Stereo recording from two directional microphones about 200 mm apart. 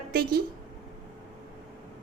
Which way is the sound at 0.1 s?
50° right (ahead or behind).